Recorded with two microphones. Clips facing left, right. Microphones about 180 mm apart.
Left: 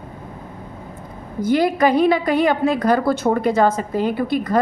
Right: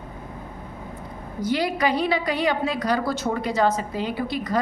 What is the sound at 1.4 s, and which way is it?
A woman's voice, 50° left (ahead or behind).